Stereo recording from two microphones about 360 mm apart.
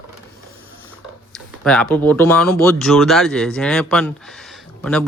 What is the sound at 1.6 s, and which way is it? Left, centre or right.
Speech, centre.